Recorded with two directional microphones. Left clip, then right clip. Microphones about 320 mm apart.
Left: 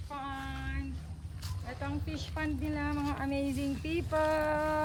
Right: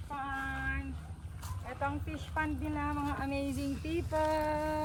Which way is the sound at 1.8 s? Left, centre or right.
Centre.